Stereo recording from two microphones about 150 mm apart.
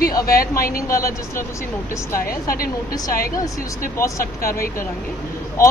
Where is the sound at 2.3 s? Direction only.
75° left (ahead or behind).